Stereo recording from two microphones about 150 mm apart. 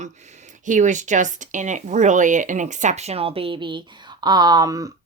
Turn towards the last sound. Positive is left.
turn(degrees=-25)  # may be behind; listen again after turning